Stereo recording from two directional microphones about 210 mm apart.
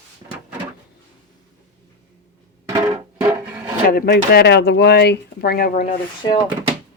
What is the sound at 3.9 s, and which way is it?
Speech, 45° left (ahead or behind).